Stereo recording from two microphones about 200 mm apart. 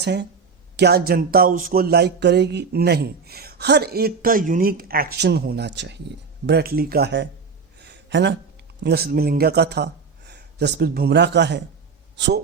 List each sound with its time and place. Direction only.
0.0 s speech: 55° right (ahead or behind)
7.8 s a sound: 60° right (ahead or behind)
8.8 s speech: 50° right (ahead or behind)